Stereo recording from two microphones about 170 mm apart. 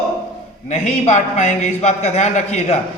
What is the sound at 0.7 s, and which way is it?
A man's voice, 40° left (ahead or behind).